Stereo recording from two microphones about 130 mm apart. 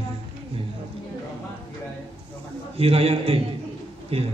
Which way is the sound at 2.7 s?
50° right (ahead or behind).